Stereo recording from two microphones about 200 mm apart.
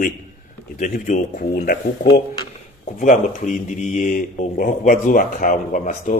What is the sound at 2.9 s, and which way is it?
Speech, 40° left (ahead or behind).